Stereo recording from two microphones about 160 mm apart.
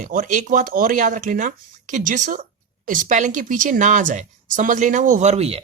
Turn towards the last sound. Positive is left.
turn(degrees=-40)  # may be behind; listen again after turning